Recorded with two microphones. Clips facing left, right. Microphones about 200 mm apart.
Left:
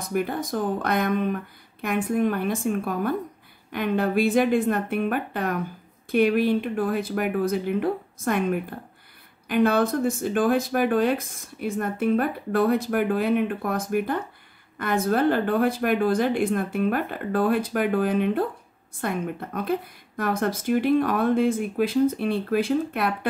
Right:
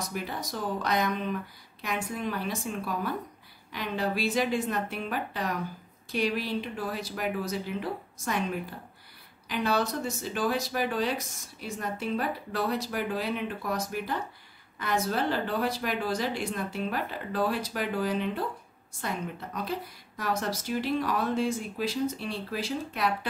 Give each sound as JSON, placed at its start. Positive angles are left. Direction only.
{"t": 0.0, "sound": "a woman's voice", "side_deg": 55}